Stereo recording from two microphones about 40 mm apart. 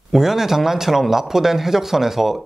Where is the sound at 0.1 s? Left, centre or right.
Centre.